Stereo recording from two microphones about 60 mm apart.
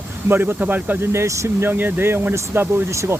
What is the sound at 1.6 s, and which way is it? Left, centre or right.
Speech, right.